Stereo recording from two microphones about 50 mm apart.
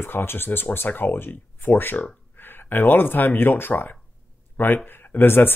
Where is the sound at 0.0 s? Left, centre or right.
Left.